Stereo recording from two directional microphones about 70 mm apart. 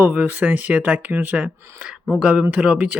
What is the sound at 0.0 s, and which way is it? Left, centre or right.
Speech, right.